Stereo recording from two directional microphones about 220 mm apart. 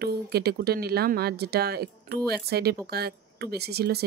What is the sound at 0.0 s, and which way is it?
Speech, 45° right (ahead or behind).